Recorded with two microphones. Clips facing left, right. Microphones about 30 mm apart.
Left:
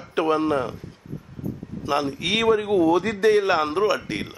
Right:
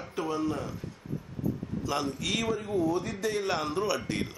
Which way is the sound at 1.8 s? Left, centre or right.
Left.